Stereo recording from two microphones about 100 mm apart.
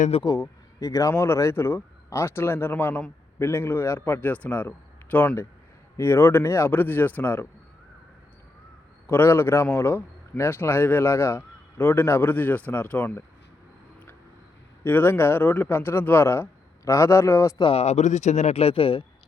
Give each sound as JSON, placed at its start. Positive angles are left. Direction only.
{"t": 0.1, "sound": "speech", "side_deg": 85}
{"t": 0.8, "sound": "a man's voice", "side_deg": 35}
{"t": 9.0, "sound": "a man's voice", "side_deg": 25}
{"t": 14.8, "sound": "a man's voice", "side_deg": 20}
{"t": 17.6, "sound": "speech", "side_deg": 80}